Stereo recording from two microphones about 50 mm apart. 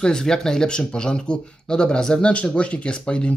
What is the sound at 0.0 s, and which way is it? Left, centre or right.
Speech, centre.